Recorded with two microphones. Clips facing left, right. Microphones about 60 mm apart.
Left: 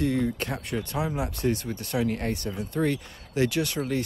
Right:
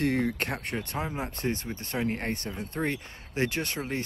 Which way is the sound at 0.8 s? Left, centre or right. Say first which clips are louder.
Left 4 dB; right.